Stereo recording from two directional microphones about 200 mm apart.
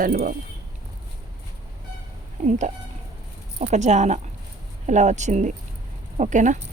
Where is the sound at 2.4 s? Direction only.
35° right (ahead or behind).